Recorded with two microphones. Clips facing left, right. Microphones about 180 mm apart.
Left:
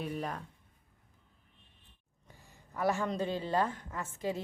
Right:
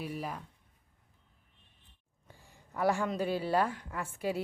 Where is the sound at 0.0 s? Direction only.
5° right (ahead or behind).